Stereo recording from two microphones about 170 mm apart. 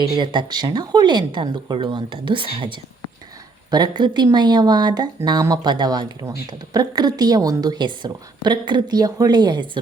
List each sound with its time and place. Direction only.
0.1 s a woman's voice: 25° right (ahead or behind)